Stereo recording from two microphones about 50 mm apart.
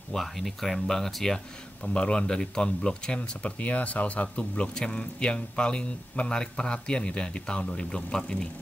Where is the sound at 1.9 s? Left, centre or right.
Centre.